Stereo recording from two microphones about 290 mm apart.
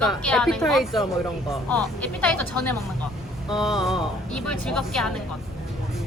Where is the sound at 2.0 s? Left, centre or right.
Centre.